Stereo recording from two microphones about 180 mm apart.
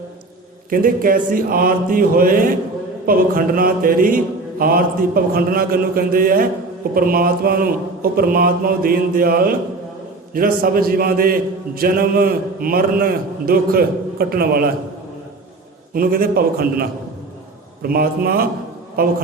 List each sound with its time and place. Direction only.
0.7 s mantra: 50° right (ahead or behind)
10.3 s a man's voice: 50° right (ahead or behind)
16.0 s a man's voice: 55° right (ahead or behind)
17.8 s a man's voice: 55° right (ahead or behind)